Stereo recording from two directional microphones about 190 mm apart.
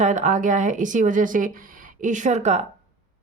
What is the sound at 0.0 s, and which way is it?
Speech, 40° right (ahead or behind).